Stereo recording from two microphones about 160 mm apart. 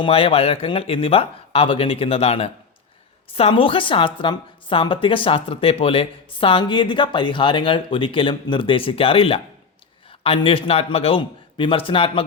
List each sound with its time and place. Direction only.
0.0 s a woman's voice: 35° left (ahead or behind)